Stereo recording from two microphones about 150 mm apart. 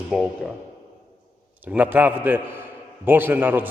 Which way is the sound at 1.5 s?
10° right (ahead or behind).